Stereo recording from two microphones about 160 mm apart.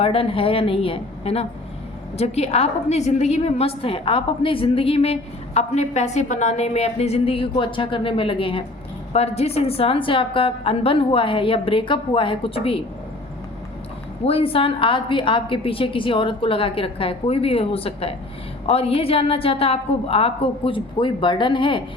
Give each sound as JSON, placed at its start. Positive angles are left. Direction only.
{"t": 0.0, "sound": "a woman's voice", "side_deg": 35}
{"t": 14.3, "sound": "a woman's voice", "side_deg": 35}